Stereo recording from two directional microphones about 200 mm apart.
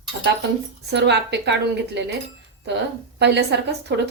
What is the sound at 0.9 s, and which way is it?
A woman's voice, 60° right (ahead or behind).